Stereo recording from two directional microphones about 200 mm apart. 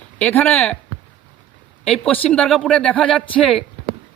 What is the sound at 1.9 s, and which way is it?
Speech, 5° left (ahead or behind).